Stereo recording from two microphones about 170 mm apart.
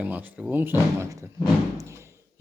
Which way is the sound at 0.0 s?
10° right (ahead or behind).